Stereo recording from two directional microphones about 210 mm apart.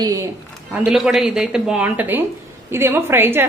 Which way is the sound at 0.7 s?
5° right (ahead or behind).